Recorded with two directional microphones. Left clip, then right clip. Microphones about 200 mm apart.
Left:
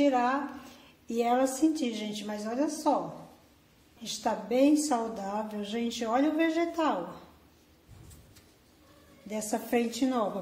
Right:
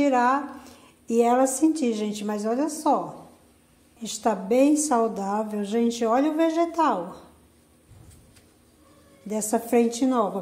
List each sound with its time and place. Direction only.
0.0 s a woman's voice: 30° right (ahead or behind)
4.0 s a woman's voice: 30° right (ahead or behind)
9.3 s a woman's voice: 25° right (ahead or behind)